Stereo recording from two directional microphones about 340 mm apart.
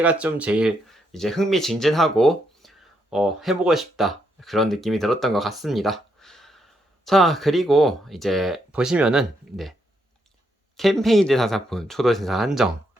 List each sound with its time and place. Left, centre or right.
0.0 s speech: centre
10.8 s speech: centre